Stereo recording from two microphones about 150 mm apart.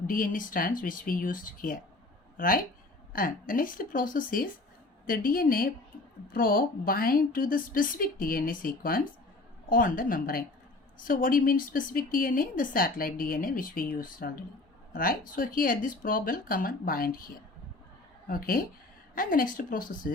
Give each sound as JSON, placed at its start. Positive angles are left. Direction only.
{"t": 0.1, "sound": "speech", "side_deg": 70}
{"t": 3.1, "sound": "a woman's voice", "side_deg": 70}